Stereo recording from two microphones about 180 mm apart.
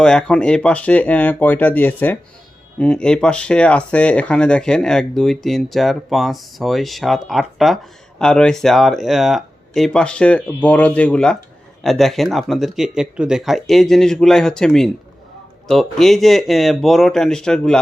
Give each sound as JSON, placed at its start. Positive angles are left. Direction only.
{"t": 0.0, "sound": "speech", "side_deg": 5}